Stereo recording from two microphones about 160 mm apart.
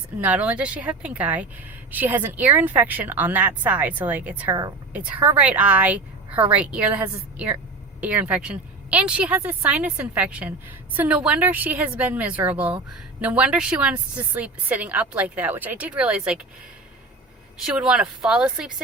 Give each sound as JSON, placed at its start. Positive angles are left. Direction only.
{"t": 0.2, "sound": "a woman's voice", "side_deg": -10}
{"t": 17.7, "sound": "speech", "side_deg": -5}